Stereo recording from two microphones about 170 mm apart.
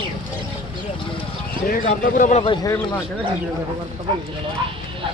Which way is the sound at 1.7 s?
55° left (ahead or behind).